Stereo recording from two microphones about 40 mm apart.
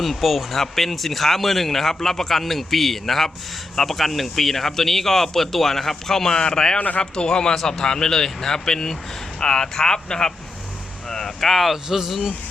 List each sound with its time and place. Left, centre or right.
0.0 s speech: centre
6.7 s speech: left
7.0 s a man's voice: centre
7.5 s speech: centre
11.9 s speech: centre